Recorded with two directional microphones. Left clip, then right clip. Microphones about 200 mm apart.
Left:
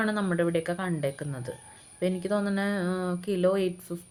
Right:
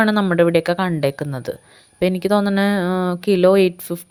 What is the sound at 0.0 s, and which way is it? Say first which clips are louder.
Speech: right 12 dB; 45° right (ahead or behind).